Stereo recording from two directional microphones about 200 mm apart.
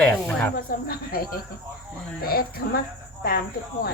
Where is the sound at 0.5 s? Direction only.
50° left (ahead or behind).